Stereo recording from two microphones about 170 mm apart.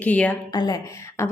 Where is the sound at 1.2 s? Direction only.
15° left (ahead or behind).